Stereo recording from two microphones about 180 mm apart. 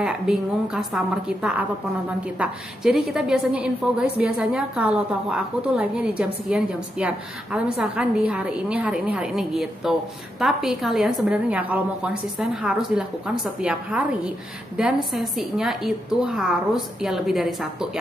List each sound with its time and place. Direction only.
0.0 s a woman's voice: 5° right (ahead or behind)